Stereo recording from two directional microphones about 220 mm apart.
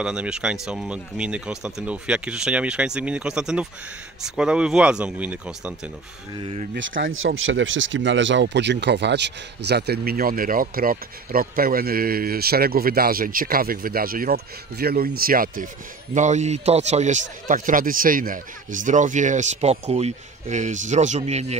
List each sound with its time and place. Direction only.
0.0 s speech: 5° right (ahead or behind)
6.3 s speech: 25° right (ahead or behind)
6.7 s speech: 50° right (ahead or behind); by 21.5 s 30° right (ahead or behind)